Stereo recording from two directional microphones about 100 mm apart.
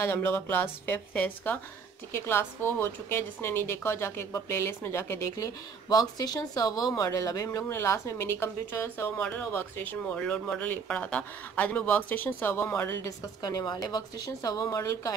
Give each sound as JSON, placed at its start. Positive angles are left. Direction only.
{"t": 0.0, "sound": "a woman's voice", "side_deg": 25}
{"t": 13.4, "sound": "a woman's voice", "side_deg": 40}